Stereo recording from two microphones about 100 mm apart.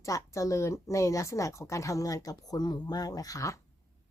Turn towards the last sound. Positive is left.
turn(degrees=35)  # may be behind; listen again after turning